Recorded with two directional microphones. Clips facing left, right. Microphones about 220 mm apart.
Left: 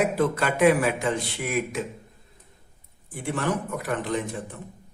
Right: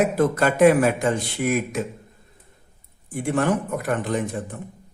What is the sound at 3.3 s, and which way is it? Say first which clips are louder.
Speech: right 5 dB; 50° right (ahead or behind).